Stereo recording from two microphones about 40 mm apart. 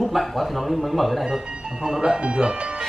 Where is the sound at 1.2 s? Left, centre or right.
Centre.